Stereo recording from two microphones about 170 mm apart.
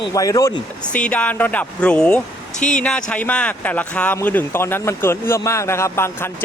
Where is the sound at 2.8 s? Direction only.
5° left (ahead or behind).